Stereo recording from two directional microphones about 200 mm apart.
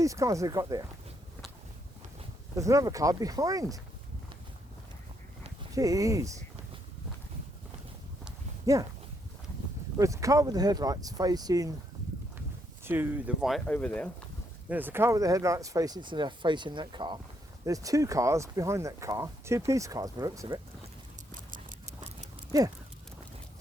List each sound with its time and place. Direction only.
0.0 s speech: 15° right (ahead or behind)
2.6 s speech: 15° right (ahead or behind)
5.7 s speech: 15° right (ahead or behind)
8.6 s speech: 15° right (ahead or behind)
10.0 s speech: 15° right (ahead or behind)
12.8 s speech: 10° right (ahead or behind); by 14.1 s 5° left (ahead or behind)
14.7 s speech: 10° right (ahead or behind)